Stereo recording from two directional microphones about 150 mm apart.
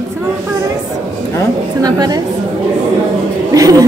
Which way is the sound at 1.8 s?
25° right (ahead or behind).